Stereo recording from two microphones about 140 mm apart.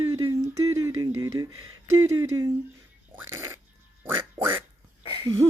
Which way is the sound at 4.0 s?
15° right (ahead or behind).